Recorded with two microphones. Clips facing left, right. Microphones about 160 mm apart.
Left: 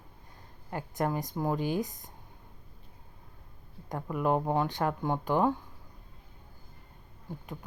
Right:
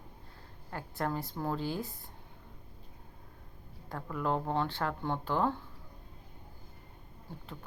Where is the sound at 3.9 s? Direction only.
15° left (ahead or behind).